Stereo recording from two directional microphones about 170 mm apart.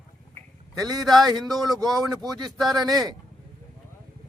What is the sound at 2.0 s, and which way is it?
Speech, 20° right (ahead or behind).